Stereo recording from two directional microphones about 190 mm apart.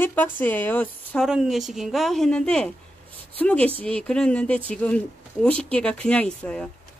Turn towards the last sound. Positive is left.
turn(degrees=5)  # may be behind; listen again after turning